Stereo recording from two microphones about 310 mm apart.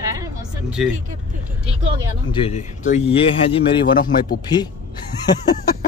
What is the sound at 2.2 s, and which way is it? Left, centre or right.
Speech, centre.